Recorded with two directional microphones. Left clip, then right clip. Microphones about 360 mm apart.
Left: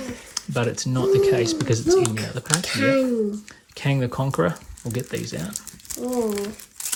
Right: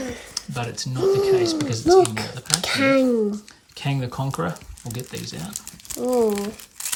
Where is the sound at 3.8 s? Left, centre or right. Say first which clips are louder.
Left 3 dB; centre.